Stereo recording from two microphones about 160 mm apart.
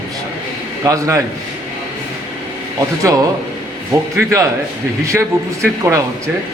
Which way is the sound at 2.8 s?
20° right (ahead or behind).